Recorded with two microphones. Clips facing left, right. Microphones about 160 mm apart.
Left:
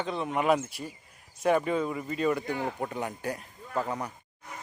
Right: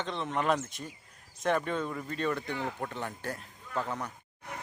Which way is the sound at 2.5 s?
40° left (ahead or behind).